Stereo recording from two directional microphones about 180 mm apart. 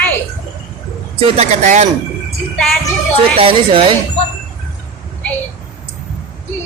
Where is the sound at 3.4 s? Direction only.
30° right (ahead or behind).